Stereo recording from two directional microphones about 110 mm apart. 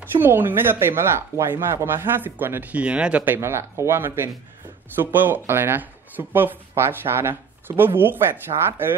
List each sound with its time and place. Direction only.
0.0 s speech: 20° right (ahead or behind)